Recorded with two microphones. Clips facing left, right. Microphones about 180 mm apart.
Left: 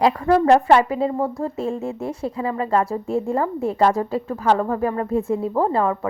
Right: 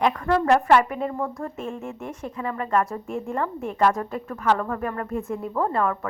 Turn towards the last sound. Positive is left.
turn(degrees=30)  # may be behind; listen again after turning